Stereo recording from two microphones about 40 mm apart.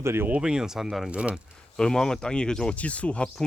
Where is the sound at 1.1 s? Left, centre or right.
Right.